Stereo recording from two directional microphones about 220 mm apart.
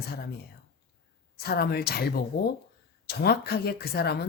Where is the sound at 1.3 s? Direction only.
45° left (ahead or behind).